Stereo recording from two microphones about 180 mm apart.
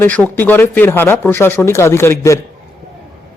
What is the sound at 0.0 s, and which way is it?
Speech, 10° left (ahead or behind).